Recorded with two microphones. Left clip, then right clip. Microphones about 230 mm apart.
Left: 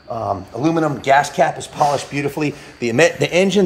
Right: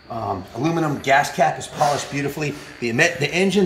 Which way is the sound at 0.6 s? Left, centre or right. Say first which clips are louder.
Left 4 dB; centre.